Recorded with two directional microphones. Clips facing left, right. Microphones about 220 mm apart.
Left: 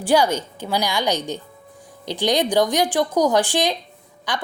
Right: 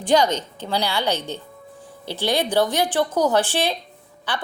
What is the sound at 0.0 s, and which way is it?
A woman's voice, 10° left (ahead or behind).